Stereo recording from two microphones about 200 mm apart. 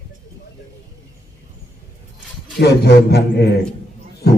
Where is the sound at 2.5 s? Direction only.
55° left (ahead or behind).